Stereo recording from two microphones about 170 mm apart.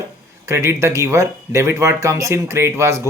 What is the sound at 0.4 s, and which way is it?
Speech, 15° right (ahead or behind).